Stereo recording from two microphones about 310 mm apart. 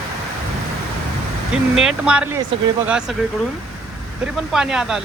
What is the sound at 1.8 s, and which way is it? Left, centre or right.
Speech, centre.